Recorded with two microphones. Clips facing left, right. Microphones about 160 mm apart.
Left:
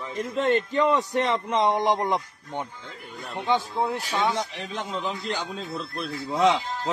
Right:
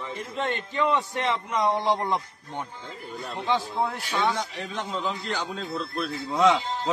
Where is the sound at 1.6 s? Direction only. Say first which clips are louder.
Left 1 dB; 20° left (ahead or behind).